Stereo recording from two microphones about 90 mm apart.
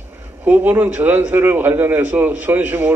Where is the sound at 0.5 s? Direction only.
20° right (ahead or behind).